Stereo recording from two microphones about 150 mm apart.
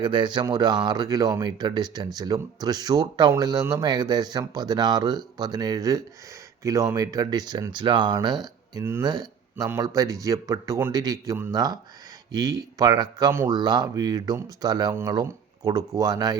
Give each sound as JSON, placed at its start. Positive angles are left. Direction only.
{"t": 0.0, "sound": "speech", "side_deg": -30}